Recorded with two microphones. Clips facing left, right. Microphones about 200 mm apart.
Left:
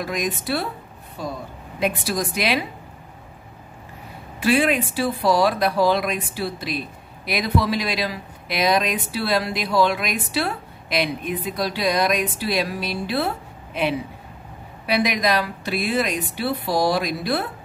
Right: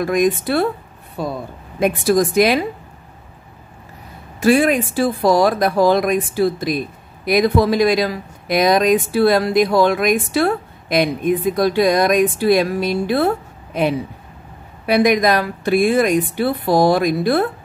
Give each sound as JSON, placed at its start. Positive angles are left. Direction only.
{"t": 0.0, "sound": "speech", "side_deg": -50}
{"t": 1.8, "sound": "speech", "side_deg": -50}
{"t": 4.4, "sound": "speech", "side_deg": -45}
{"t": 14.9, "sound": "speech", "side_deg": -50}